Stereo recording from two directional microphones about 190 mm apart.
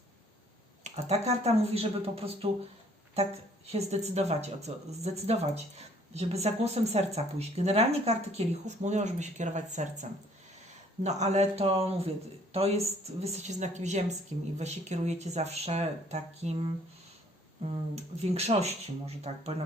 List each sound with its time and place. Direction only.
0.9 s speech: 35° right (ahead or behind)
17.9 s speech: 35° right (ahead or behind)